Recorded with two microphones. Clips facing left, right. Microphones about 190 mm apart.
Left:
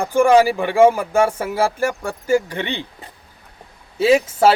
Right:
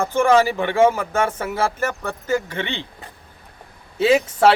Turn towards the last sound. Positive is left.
turn(degrees=5)  # may be behind; listen again after turning